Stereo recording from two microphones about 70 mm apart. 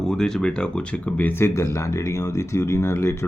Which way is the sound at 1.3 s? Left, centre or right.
Left.